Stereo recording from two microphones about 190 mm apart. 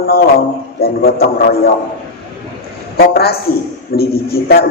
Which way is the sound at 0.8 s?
55° left (ahead or behind).